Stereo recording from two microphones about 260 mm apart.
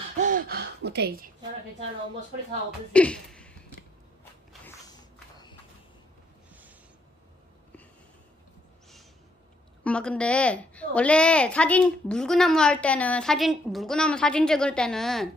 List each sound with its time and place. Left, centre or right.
0.2 s gasp: right
2.9 s speech: centre
4.2 s walk: centre
9.8 s a woman's voice: centre